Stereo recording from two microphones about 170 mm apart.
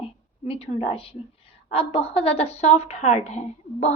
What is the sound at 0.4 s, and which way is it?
A woman's voice, 35° left (ahead or behind).